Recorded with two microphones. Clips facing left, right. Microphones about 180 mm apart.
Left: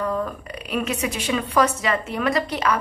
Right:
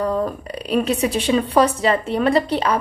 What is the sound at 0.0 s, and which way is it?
A woman's voice, 35° right (ahead or behind).